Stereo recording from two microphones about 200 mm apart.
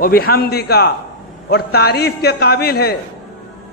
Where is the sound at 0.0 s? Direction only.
50° left (ahead or behind).